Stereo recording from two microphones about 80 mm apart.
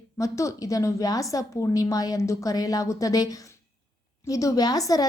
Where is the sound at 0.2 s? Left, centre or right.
Left.